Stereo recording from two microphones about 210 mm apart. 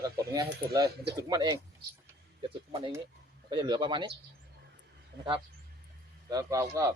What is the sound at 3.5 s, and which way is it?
Speech, 20° right (ahead or behind).